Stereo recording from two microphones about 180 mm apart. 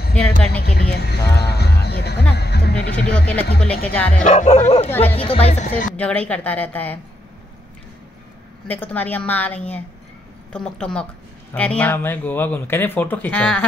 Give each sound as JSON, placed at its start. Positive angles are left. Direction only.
{"t": 0.5, "sound": "a sound", "side_deg": 60}
{"t": 3.1, "sound": "speech", "side_deg": 5}
{"t": 4.2, "sound": "speech", "side_deg": 40}
{"t": 5.9, "sound": "speech", "side_deg": 5}
{"t": 8.6, "sound": "a woman's voice", "side_deg": 10}